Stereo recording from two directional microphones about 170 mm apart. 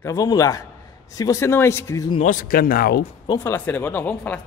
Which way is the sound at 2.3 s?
55° left (ahead or behind).